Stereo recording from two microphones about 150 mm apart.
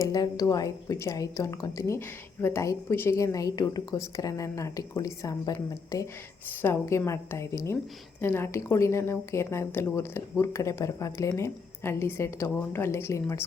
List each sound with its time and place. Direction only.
0.0 s a woman's voice: 25° left (ahead or behind)